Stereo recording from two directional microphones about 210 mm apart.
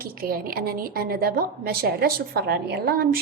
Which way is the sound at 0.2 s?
45° right (ahead or behind).